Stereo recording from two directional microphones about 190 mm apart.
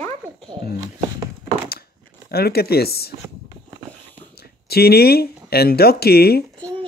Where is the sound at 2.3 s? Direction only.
55° left (ahead or behind).